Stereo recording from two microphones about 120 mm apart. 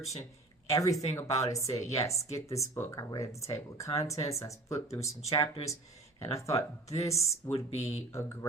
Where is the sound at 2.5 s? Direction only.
25° left (ahead or behind).